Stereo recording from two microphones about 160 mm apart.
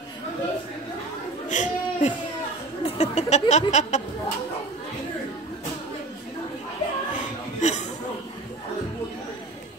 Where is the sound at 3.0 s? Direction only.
45° left (ahead or behind).